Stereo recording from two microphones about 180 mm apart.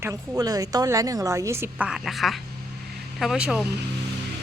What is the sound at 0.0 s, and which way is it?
A woman's voice, 20° right (ahead or behind).